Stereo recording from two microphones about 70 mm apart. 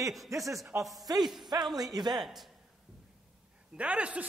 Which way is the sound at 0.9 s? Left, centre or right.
Right.